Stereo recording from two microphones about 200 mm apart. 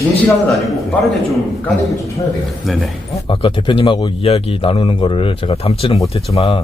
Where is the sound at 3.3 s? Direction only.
25° left (ahead or behind).